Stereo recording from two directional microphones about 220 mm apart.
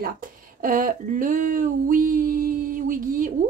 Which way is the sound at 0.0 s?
40° right (ahead or behind).